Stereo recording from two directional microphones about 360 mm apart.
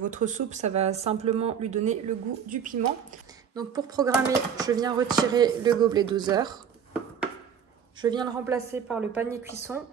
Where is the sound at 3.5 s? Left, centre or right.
Centre.